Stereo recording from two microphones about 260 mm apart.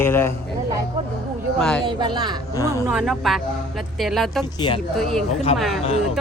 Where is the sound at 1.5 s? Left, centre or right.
Centre.